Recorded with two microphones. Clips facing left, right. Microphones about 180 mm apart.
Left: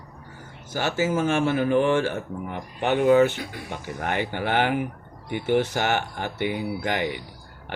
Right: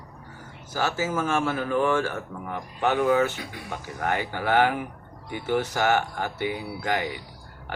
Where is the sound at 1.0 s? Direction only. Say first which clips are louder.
Left 6 dB; 25° left (ahead or behind).